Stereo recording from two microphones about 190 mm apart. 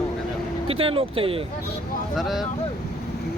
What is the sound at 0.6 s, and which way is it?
Speech, 30° right (ahead or behind).